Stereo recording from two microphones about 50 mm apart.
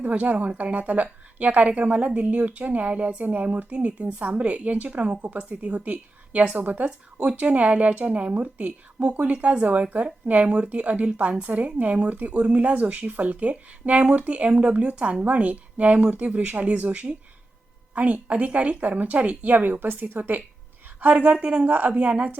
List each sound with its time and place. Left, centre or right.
0.0 s a woman's voice: right